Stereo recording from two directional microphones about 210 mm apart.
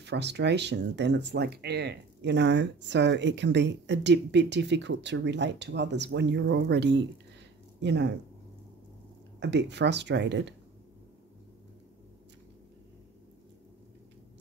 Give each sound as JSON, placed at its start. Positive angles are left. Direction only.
{"t": 0.0, "sound": "speech", "side_deg": -55}
{"t": 9.4, "sound": "speech", "side_deg": -55}